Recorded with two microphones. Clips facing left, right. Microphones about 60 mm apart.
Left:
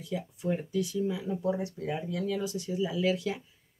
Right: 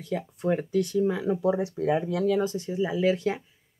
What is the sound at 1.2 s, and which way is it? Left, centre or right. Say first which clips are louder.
Speech: right 6 dB; right.